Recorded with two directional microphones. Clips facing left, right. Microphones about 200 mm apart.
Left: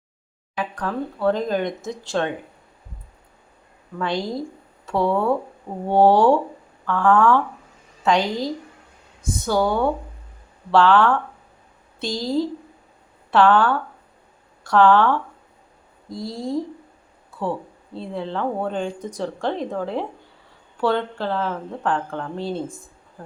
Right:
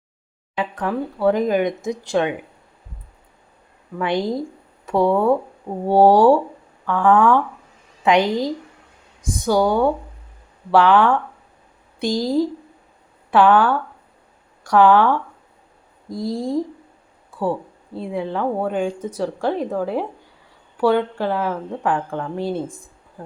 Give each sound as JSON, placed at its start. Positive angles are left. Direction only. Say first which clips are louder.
{"t": 0.5, "sound": "a woman's voice", "louder": "right 3 dB", "side_deg": -25}
{"t": 0.9, "sound": "a woman's voice", "louder": "right 3 dB", "side_deg": -10}
{"t": 3.9, "sound": "a woman's voice", "louder": "right 4 dB", "side_deg": -20}
{"t": 16.1, "sound": "a woman's voice", "louder": "right 4 dB", "side_deg": -15}
{"t": 17.9, "sound": "a woman's voice", "louder": "right 3 dB", "side_deg": -10}
{"t": 22.6, "sound": "speech", "louder": "right 1 dB", "side_deg": 0}